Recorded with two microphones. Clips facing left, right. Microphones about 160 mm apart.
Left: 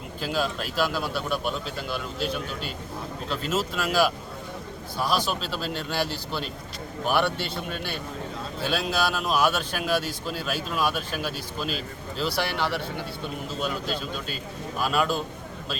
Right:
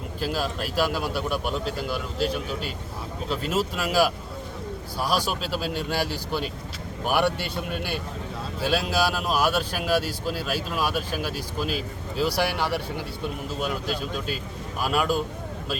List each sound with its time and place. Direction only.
0.2 s speech: 5° right (ahead or behind)